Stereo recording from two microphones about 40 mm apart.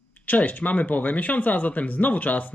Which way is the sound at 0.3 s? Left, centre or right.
Left.